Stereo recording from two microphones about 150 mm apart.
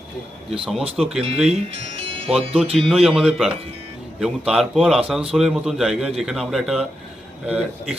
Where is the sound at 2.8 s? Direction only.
Centre (ahead or behind).